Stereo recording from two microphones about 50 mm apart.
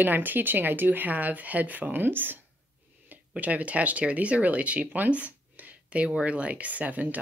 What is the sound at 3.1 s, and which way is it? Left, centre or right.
Speech, right.